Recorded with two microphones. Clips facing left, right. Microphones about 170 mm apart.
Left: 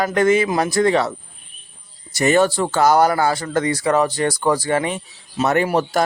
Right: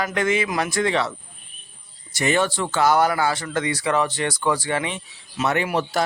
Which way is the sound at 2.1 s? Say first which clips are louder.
Left 6 dB; 40° left (ahead or behind).